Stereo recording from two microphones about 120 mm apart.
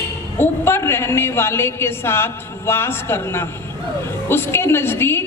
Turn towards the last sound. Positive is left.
turn(degrees=20)  # may be behind; listen again after turning